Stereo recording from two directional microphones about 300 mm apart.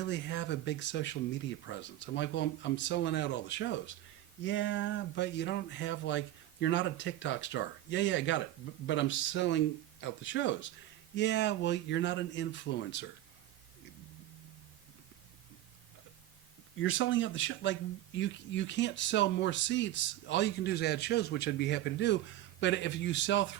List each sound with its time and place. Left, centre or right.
0.0 s speech: left
16.8 s speech: left